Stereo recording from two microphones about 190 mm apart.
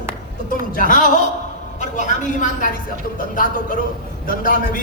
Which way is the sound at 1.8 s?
40° left (ahead or behind).